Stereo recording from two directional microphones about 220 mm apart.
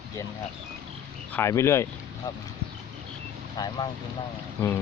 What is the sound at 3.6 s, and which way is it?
Speech, 20° left (ahead or behind).